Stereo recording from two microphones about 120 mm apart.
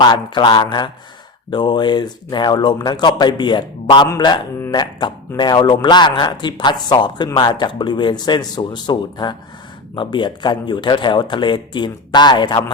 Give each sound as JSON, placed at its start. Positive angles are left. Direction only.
{"t": 0.0, "sound": "speech", "side_deg": 40}